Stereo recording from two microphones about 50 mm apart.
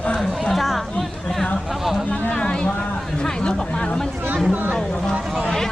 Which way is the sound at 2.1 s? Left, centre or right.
Left.